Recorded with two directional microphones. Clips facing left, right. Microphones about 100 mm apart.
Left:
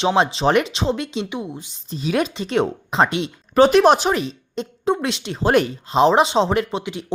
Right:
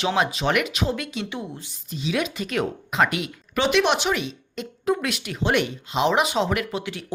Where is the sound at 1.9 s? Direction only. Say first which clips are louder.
Left 5 dB; 45° left (ahead or behind).